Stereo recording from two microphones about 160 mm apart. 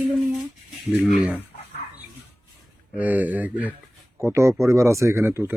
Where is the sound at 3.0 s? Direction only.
10° right (ahead or behind).